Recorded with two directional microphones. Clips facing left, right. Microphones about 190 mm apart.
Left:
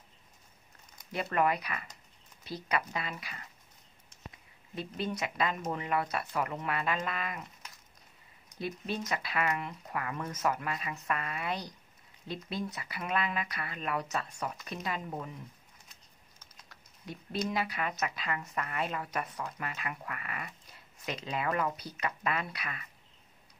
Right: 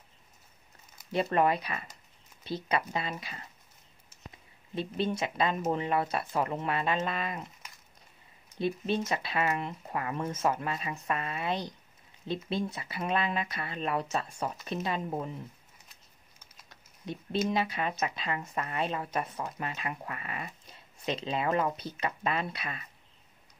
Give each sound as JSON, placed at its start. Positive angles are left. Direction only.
{"t": 1.1, "sound": "speech", "side_deg": -30}
{"t": 4.1, "sound": "a sound", "side_deg": -5}
{"t": 4.7, "sound": "speech", "side_deg": -25}
{"t": 8.5, "sound": "speech", "side_deg": -25}
{"t": 16.6, "sound": "a sound", "side_deg": -25}
{"t": 17.5, "sound": "speech", "side_deg": -25}